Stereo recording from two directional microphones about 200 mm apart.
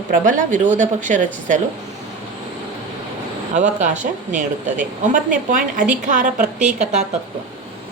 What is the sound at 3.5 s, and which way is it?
A woman's voice, 35° right (ahead or behind).